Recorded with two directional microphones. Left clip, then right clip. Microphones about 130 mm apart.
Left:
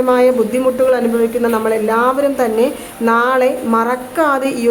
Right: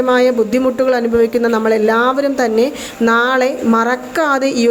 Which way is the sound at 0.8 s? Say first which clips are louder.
Right 1 dB; 55° right (ahead or behind).